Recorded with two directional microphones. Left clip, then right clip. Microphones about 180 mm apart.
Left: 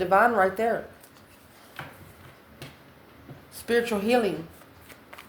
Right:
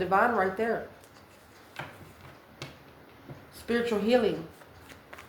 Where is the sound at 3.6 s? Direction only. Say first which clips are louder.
Left 3 dB; 45° left (ahead or behind).